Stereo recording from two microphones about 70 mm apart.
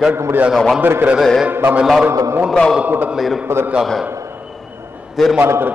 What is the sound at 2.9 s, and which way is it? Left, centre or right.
Speech, right.